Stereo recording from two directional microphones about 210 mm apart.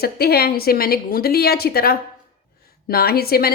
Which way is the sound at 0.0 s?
50° left (ahead or behind).